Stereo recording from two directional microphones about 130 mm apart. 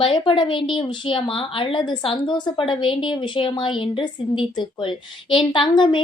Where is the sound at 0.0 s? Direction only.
40° left (ahead or behind).